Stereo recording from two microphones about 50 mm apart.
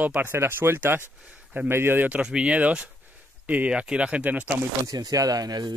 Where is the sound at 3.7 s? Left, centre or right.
Right.